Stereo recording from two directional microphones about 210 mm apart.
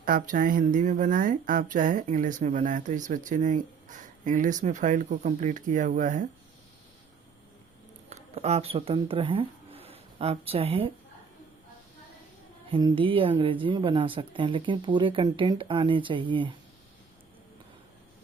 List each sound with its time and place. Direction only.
0.0 s speech: 40° right (ahead or behind)
8.1 s speech: 30° right (ahead or behind)
12.7 s speech: 25° right (ahead or behind)